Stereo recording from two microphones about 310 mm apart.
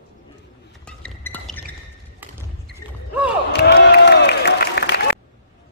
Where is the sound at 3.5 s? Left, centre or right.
Left.